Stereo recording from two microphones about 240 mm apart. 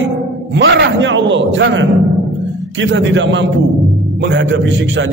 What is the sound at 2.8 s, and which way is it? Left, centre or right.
A man's voice, right.